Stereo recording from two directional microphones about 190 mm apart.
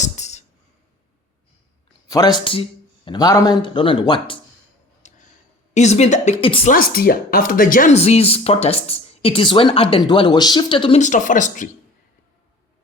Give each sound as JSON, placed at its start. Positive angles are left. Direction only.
{"t": 0.0, "sound": "music", "side_deg": 35}
{"t": 2.0, "sound": "a man's voice", "side_deg": 20}
{"t": 5.0, "sound": "tick-tock", "side_deg": 40}
{"t": 5.7, "sound": "speech", "side_deg": 35}
{"t": 6.7, "sound": "speech", "side_deg": 50}
{"t": 11.0, "sound": "speech", "side_deg": 40}